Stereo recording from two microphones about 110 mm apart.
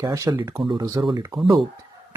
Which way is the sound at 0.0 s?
30° right (ahead or behind).